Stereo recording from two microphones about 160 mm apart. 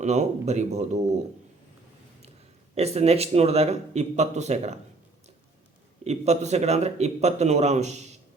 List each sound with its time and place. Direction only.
0.0 s a man's voice: 45° right (ahead or behind)
2.7 s speech: 40° right (ahead or behind)
6.1 s a man's voice: 45° right (ahead or behind)